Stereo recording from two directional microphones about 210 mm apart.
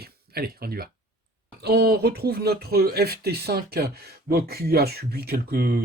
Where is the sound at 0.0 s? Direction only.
45° right (ahead or behind).